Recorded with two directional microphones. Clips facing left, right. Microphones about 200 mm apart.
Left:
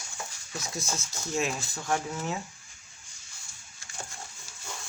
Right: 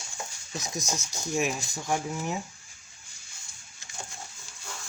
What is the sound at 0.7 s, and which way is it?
Speech, 15° right (ahead or behind).